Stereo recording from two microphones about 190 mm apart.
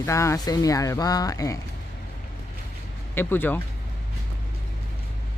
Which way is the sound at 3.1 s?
10° left (ahead or behind).